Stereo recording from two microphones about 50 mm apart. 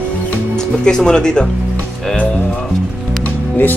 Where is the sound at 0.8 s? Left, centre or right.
Centre.